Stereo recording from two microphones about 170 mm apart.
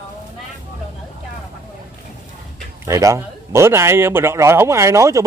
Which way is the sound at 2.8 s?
20° right (ahead or behind).